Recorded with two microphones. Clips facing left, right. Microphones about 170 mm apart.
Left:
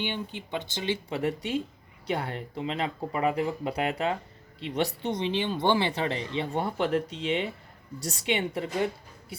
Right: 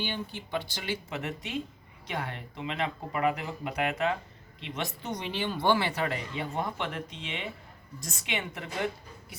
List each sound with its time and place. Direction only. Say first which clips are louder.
0.0 s speech: left 2 dB; 20° left (ahead or behind)